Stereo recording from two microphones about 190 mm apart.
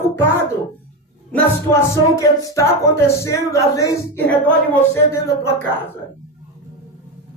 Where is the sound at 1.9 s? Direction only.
15° left (ahead or behind).